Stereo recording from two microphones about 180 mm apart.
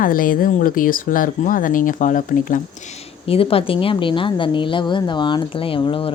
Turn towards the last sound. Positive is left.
turn(degrees=30)  # may be behind; listen again after turning